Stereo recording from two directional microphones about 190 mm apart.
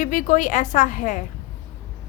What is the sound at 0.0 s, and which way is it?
A woman's voice, 40° left (ahead or behind).